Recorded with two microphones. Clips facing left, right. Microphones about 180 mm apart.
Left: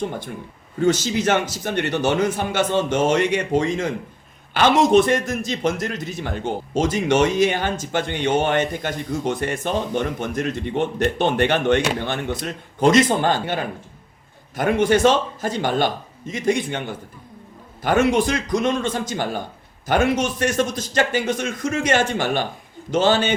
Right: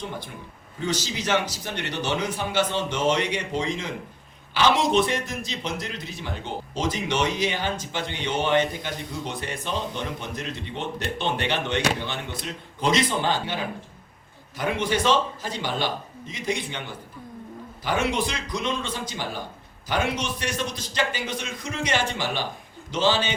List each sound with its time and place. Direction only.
0.8 s a man's voice: 50° left (ahead or behind)
17.8 s a man's voice: 50° left (ahead or behind)